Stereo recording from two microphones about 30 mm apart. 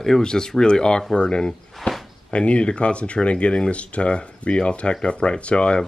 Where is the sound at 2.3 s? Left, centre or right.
Left.